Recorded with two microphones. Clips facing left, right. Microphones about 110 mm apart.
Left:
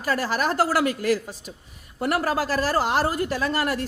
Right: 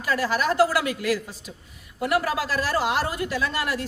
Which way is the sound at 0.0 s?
40° left (ahead or behind).